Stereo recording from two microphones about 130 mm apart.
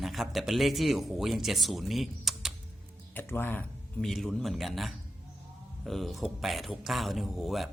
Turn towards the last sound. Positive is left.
turn(degrees=0)  # may be behind; listen again after turning